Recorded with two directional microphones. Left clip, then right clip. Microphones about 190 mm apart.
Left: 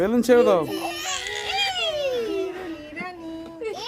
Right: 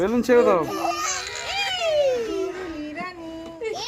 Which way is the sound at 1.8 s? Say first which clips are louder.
Right 4 dB; 10° right (ahead or behind).